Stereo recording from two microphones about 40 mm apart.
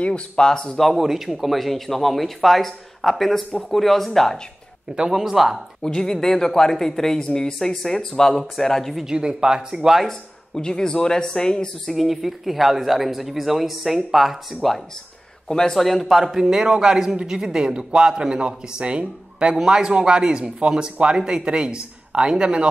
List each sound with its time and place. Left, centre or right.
0.0 s speech: left
0.5 s speech: centre
0.7 s speech: centre
5.1 s a man's voice: centre
5.8 s speech: centre
9.1 s a man's voice: centre
10.0 s speech: centre
11.9 s speech: centre
15.4 s speech: centre
16.3 s a man's voice: centre